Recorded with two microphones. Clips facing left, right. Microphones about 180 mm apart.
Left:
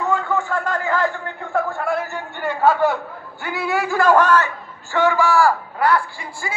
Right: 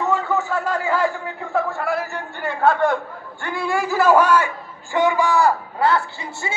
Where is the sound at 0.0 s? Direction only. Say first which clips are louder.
Even; 5° right (ahead or behind).